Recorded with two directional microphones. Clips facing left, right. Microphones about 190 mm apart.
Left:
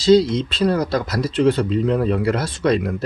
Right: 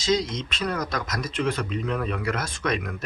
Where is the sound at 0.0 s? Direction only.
30° left (ahead or behind).